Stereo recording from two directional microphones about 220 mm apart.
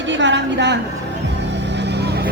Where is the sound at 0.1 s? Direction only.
55° right (ahead or behind).